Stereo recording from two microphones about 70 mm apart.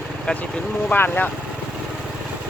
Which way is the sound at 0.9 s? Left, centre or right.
Left.